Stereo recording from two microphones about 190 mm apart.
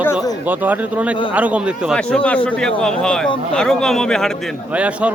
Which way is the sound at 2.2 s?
5° left (ahead or behind).